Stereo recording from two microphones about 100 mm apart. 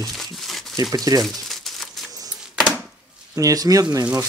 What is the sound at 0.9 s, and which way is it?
Speech, 40° right (ahead or behind).